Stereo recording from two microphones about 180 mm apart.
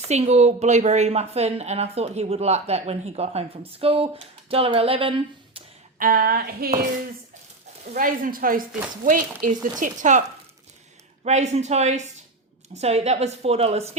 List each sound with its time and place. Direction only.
0.1 s a woman's voice: 35° right (ahead or behind)
6.0 s a sound: 55° right (ahead or behind)
7.9 s a woman's voice: 50° right (ahead or behind)